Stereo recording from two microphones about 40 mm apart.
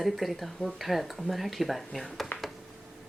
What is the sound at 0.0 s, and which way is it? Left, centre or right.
Speech, centre.